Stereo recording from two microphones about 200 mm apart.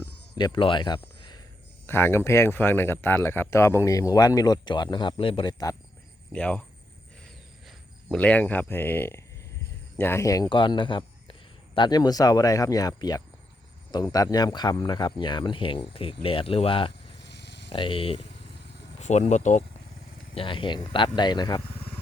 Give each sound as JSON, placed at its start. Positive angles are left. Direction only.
{"t": 0.3, "sound": "speech", "side_deg": 20}
{"t": 6.3, "sound": "speech", "side_deg": 5}
{"t": 8.1, "sound": "speech", "side_deg": 5}
{"t": 17.2, "sound": "a sound", "side_deg": 60}
{"t": 17.7, "sound": "speech", "side_deg": 25}
{"t": 20.3, "sound": "speech", "side_deg": 25}